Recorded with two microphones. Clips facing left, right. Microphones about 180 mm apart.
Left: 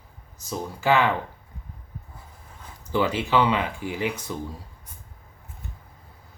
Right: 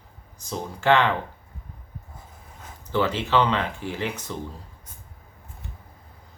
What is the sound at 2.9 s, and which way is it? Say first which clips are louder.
Speech: even; 10° left (ahead or behind).